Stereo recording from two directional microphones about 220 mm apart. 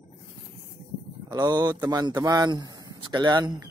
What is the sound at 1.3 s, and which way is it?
A man's voice, 15° right (ahead or behind).